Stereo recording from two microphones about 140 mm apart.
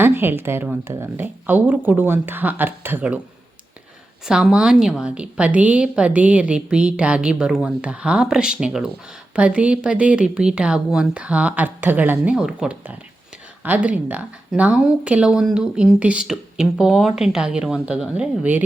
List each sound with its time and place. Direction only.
0.0 s speech: 15° right (ahead or behind)
4.3 s speech: 5° right (ahead or behind)